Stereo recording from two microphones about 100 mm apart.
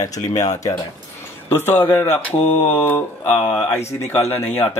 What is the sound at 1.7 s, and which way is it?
Speech, 20° left (ahead or behind).